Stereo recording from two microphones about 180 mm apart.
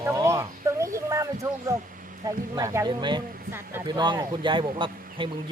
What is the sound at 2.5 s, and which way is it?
Speech, 20° right (ahead or behind).